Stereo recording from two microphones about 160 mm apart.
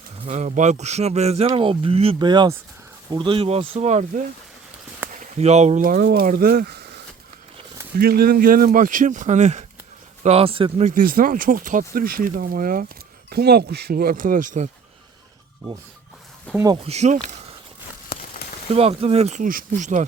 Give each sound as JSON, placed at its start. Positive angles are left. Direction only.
{"t": 0.3, "sound": "speech", "side_deg": -45}
{"t": 5.8, "sound": "speech", "side_deg": -65}
{"t": 7.9, "sound": "speech", "side_deg": -70}
{"t": 10.8, "sound": "speech", "side_deg": -60}
{"t": 13.3, "sound": "speech", "side_deg": -75}
{"t": 16.6, "sound": "speech", "side_deg": -35}
{"t": 18.7, "sound": "speech", "side_deg": -40}